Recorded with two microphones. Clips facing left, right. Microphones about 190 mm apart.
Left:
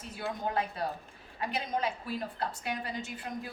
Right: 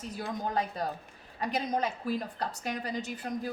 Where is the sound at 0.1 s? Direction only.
40° right (ahead or behind).